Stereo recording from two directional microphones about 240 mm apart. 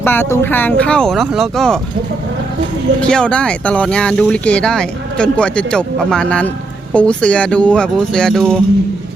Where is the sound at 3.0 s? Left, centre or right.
Centre.